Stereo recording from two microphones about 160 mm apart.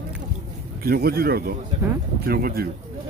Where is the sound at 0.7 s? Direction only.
70° right (ahead or behind).